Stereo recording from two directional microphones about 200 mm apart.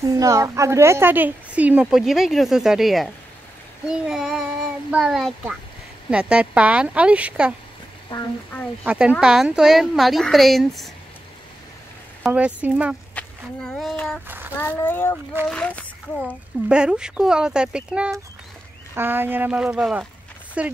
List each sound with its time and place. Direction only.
0.2 s speech: 15° right (ahead or behind)
8.1 s speech: 25° left (ahead or behind)
8.8 s speech: 5° right (ahead or behind)
12.2 s speech: 5° right (ahead or behind)
14.2 s child singing: 10° right (ahead or behind)
14.8 s a child's voice: 10° left (ahead or behind)
16.6 s speech: 5° right (ahead or behind)